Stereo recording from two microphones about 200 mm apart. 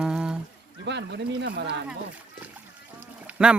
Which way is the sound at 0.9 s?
60° right (ahead or behind).